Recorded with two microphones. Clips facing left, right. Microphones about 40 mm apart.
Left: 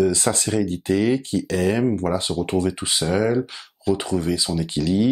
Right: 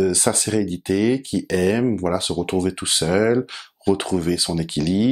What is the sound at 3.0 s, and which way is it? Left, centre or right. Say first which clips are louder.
Speech: right 3 dB; centre.